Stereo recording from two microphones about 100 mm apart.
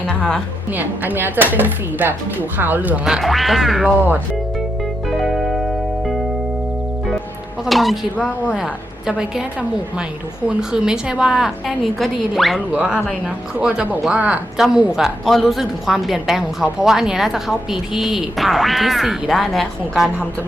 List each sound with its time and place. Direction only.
0.1 s music: 10° left (ahead or behind)
0.7 s speech: 20° right (ahead or behind)
3.0 s a woman's voice: 5° right (ahead or behind)
5.0 s music: centre (ahead or behind)
7.6 s a woman's voice: centre (ahead or behind)
12.7 s a woman's voice: 10° right (ahead or behind)